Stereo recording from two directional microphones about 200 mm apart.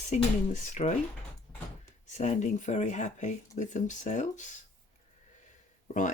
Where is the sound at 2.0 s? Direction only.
35° left (ahead or behind).